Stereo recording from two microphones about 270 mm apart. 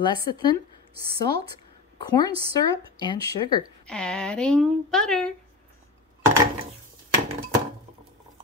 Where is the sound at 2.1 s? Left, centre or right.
Centre.